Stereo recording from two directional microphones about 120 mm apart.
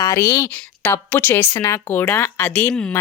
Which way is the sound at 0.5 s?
10° left (ahead or behind).